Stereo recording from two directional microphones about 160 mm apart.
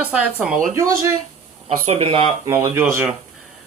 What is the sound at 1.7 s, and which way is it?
Speech, 40° right (ahead or behind).